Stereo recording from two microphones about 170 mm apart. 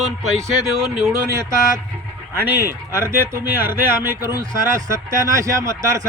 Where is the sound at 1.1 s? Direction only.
15° right (ahead or behind).